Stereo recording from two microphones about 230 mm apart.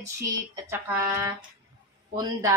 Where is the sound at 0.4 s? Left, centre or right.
Centre.